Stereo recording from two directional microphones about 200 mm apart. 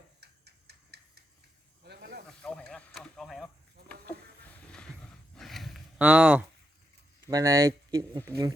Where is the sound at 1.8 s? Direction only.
60° right (ahead or behind).